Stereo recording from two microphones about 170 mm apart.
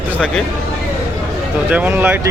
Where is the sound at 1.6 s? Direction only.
10° right (ahead or behind).